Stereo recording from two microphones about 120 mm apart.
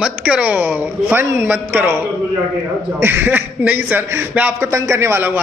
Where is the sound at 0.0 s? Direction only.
10° right (ahead or behind).